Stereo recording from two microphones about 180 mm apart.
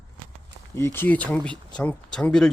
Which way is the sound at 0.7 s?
15° left (ahead or behind).